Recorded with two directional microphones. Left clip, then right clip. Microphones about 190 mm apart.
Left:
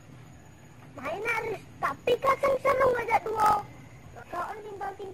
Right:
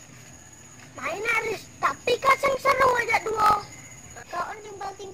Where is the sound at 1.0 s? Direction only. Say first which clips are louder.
Right 5 dB; 5° right (ahead or behind).